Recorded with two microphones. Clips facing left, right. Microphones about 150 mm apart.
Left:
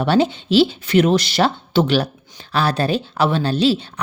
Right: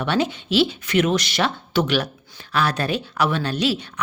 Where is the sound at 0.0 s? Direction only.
30° left (ahead or behind).